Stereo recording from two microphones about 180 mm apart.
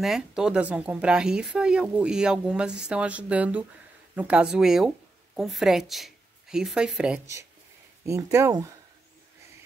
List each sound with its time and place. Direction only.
0.0 s speech: 5° right (ahead or behind)
8.1 s speech: 15° right (ahead or behind)